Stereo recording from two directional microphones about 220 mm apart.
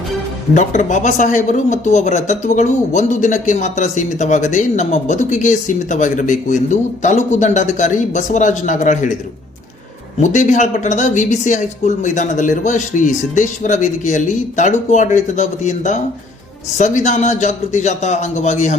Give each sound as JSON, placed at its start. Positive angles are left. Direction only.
{"t": 0.5, "sound": "speech", "side_deg": 35}
{"t": 10.2, "sound": "speech", "side_deg": 35}